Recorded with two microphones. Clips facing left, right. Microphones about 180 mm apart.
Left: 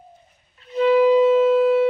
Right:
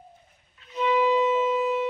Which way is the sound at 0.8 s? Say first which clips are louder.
Left 8 dB; 90° left.